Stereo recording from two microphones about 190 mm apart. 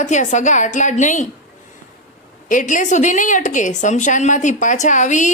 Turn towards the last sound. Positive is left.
turn(degrees=40)  # may be behind; listen again after turning